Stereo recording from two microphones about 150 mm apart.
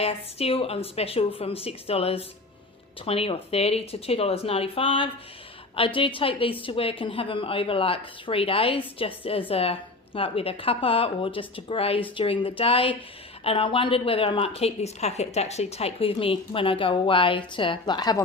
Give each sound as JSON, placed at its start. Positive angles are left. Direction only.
{"t": 0.0, "sound": "a woman's voice", "side_deg": 40}